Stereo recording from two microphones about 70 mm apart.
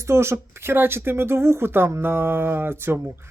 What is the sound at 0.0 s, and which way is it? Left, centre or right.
Speech, right.